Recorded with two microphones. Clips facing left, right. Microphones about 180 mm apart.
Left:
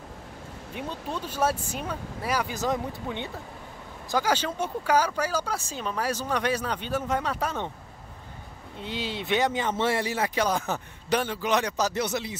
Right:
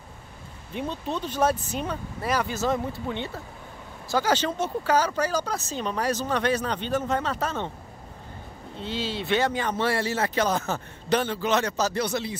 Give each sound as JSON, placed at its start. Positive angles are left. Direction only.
{"t": 0.7, "sound": "speech", "side_deg": 10}
{"t": 8.7, "sound": "speech", "side_deg": 15}